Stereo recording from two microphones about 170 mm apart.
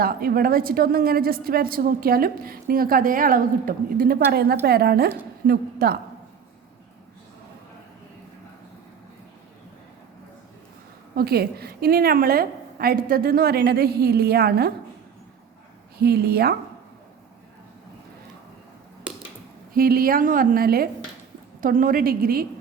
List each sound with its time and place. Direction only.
0.0 s a woman's voice: 60° right (ahead or behind)
11.1 s a woman's voice: 65° right (ahead or behind)
16.0 s speech: 70° right (ahead or behind)
19.7 s a woman's voice: 60° right (ahead or behind)